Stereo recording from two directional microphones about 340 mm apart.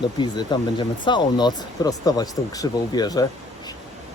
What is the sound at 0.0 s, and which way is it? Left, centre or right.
Speech, centre.